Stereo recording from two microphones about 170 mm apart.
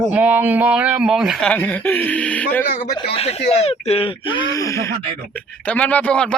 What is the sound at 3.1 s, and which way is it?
Speech, 35° left (ahead or behind).